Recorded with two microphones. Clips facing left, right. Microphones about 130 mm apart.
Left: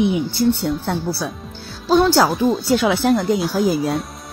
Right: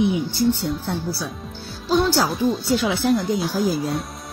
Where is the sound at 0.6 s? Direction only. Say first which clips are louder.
Left 4 dB; 65° left (ahead or behind).